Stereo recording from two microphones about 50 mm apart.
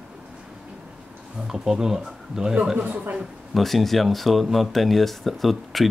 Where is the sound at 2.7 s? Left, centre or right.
Right.